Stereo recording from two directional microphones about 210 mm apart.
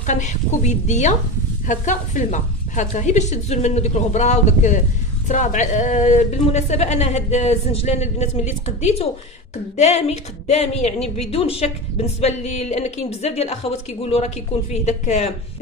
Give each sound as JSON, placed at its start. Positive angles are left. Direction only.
{"t": 0.0, "sound": "a woman's voice", "side_deg": 35}